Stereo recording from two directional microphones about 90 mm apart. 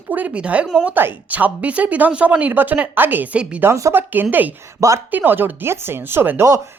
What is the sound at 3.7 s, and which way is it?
Speech, 35° right (ahead or behind).